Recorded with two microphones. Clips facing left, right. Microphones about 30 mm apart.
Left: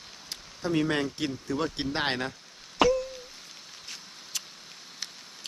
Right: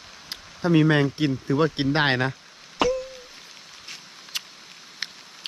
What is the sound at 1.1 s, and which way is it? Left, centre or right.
Speech, right.